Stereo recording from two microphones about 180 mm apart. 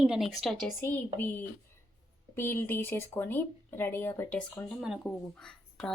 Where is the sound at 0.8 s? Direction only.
10° left (ahead or behind).